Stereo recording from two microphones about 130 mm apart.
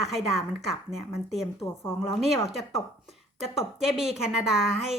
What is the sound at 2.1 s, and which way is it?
A woman's voice, centre (ahead or behind).